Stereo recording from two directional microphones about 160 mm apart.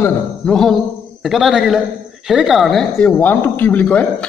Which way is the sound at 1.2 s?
Centre (ahead or behind).